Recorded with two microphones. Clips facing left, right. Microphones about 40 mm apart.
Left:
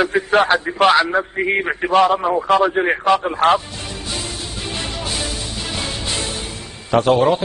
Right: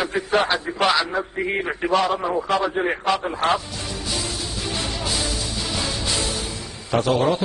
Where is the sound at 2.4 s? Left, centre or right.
Left.